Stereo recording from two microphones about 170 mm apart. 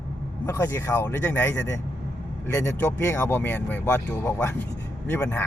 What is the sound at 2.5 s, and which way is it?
Speech, 15° left (ahead or behind).